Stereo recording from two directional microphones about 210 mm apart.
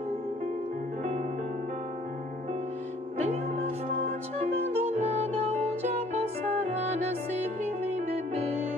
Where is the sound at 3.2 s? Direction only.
35° right (ahead or behind).